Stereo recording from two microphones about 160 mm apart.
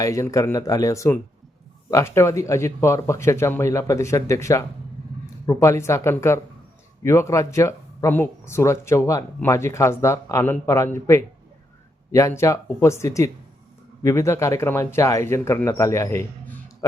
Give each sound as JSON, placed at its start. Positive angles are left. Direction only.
{"t": 0.0, "sound": "speech", "side_deg": 20}